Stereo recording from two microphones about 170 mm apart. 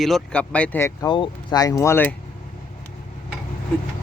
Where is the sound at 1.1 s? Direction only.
25° left (ahead or behind).